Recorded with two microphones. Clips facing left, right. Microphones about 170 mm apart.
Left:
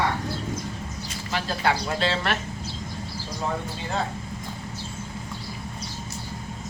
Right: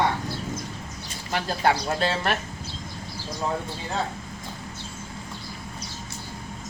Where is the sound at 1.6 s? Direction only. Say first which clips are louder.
Right 2 dB; 45° right (ahead or behind).